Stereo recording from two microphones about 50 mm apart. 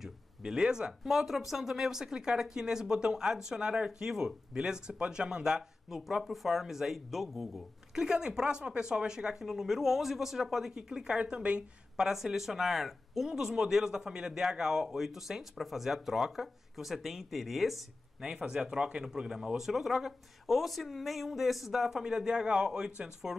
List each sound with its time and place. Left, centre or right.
0.0 s speech: centre
7.9 s a woman's voice: centre
12.0 s speech: centre
18.2 s speech: centre